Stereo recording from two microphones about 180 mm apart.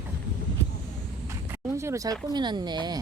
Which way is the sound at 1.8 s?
15° right (ahead or behind).